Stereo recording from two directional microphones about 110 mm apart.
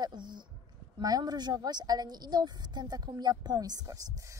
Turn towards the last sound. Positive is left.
turn(degrees=-35)  # may be behind; listen again after turning